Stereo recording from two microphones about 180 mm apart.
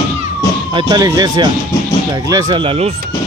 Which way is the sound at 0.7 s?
25° right (ahead or behind).